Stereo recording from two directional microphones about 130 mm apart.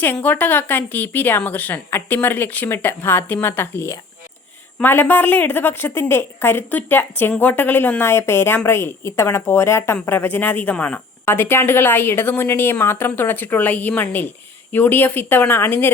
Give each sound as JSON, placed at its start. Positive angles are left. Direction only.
{"t": 0.0, "sound": "a woman's voice", "side_deg": 15}